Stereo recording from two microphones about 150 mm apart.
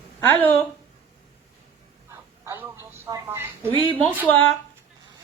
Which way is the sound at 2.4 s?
15° right (ahead or behind).